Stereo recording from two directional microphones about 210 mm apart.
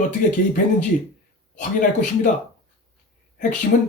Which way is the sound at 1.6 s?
40° left (ahead or behind).